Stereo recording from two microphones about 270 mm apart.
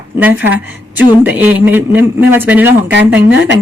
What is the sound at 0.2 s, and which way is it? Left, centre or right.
A woman's voice, centre.